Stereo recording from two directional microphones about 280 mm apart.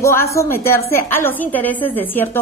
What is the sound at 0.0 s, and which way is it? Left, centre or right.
A woman's voice, centre.